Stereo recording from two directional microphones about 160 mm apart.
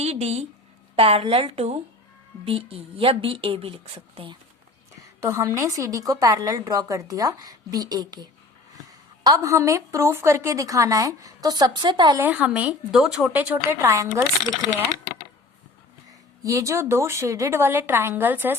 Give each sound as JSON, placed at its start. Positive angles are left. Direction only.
{"t": 0.0, "sound": "a woman's voice", "side_deg": -40}
{"t": 5.2, "sound": "a woman's voice", "side_deg": -15}
{"t": 12.2, "sound": "a woman's voice", "side_deg": -10}
{"t": 16.4, "sound": "a woman's voice", "side_deg": -20}